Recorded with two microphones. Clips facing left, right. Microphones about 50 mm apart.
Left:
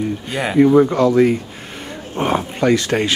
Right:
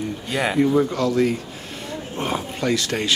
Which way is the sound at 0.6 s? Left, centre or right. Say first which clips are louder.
Left 9 dB; left.